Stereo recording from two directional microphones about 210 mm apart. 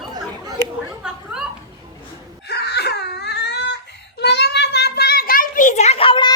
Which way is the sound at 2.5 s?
50° left (ahead or behind).